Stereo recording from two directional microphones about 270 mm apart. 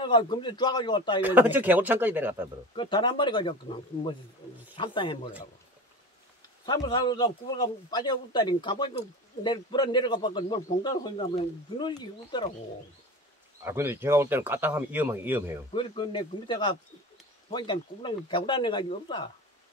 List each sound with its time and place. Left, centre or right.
0.0 s a man's voice: centre
1.2 s speech: centre
2.7 s a man's voice: centre
6.6 s a man's voice: centre
13.7 s speech: centre
15.7 s a man's voice: centre